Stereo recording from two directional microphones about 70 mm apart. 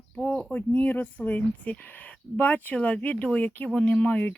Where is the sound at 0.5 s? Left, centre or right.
Left.